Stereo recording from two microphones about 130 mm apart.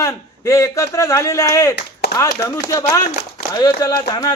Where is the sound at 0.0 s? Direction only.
25° left (ahead or behind).